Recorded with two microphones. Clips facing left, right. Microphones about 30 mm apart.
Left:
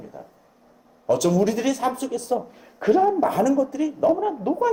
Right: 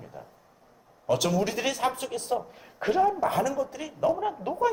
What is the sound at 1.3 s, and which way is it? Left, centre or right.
A man's voice, centre.